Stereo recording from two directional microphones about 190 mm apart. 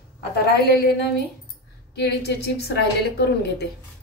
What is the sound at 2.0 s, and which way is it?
A woman's voice, 60° left (ahead or behind).